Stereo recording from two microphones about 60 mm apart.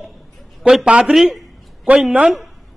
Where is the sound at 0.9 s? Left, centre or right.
Centre.